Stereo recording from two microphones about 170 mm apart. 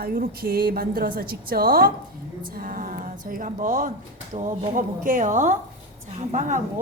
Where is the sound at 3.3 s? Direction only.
50° right (ahead or behind).